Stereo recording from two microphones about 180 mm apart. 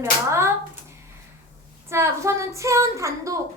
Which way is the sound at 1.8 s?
15° right (ahead or behind).